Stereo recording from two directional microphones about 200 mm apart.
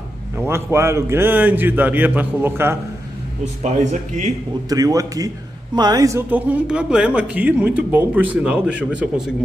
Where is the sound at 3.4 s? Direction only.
35° right (ahead or behind).